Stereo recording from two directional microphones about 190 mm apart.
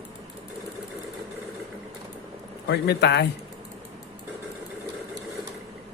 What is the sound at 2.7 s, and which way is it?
Speech, 60° left (ahead or behind).